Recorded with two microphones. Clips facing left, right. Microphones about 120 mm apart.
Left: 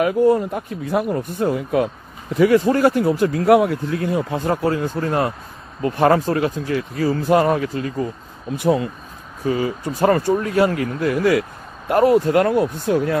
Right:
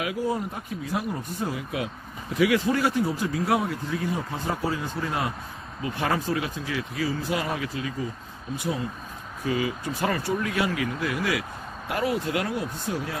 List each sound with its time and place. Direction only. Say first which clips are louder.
0.0 s speech: left 12 dB; 55° left (ahead or behind)
3.0 s speech: left 8 dB; 60° left (ahead or behind)
5.8 s speech: left 11 dB; 50° left (ahead or behind)
8.5 s speech: left 11 dB; 65° left (ahead or behind)
9.5 s speech: left 6 dB; 35° left (ahead or behind); by 13.2 s 60° left (ahead or behind)